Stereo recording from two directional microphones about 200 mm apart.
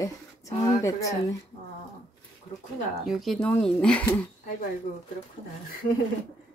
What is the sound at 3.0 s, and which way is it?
Speech, centre (ahead or behind).